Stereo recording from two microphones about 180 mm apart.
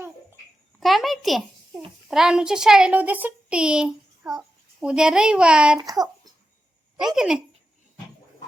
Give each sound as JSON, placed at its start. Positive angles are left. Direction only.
{"t": 0.8, "sound": "a child's voice", "side_deg": 0}
{"t": 5.8, "sound": "speech", "side_deg": -20}
{"t": 7.2, "sound": "speech", "side_deg": -5}